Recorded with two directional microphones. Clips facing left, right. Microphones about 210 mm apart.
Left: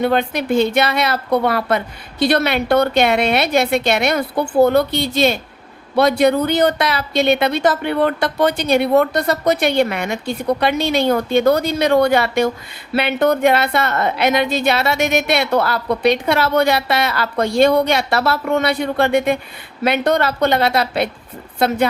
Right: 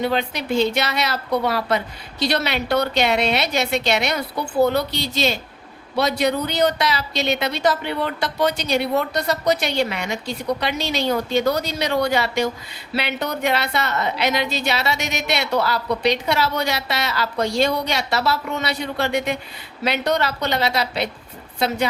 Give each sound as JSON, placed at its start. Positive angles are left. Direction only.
{"t": 0.0, "sound": "a woman's voice", "side_deg": 55}